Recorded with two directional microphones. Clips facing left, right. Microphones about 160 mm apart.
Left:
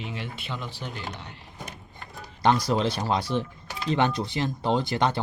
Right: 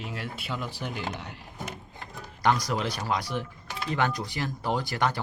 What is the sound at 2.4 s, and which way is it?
Speech, 30° left (ahead or behind).